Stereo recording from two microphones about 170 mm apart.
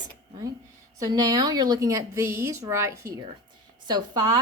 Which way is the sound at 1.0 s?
25° right (ahead or behind).